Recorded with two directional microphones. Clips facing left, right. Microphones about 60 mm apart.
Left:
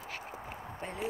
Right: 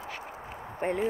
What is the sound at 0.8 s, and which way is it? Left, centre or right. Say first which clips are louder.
Speech: right 13 dB; right.